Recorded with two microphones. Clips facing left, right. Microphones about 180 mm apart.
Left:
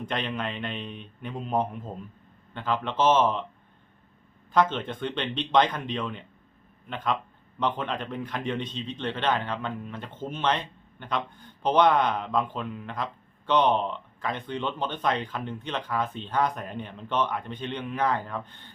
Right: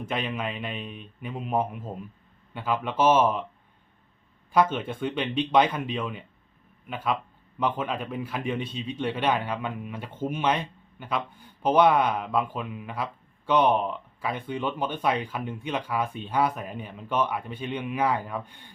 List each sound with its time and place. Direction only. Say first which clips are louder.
0.0 s a man's voice: right 1 dB; 5° right (ahead or behind)
4.5 s speech: right 1 dB; 10° right (ahead or behind)